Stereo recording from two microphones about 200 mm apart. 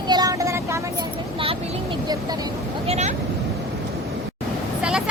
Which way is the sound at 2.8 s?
30° right (ahead or behind).